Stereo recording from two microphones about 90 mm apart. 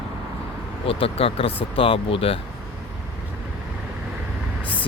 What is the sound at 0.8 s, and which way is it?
Speech, 90° left.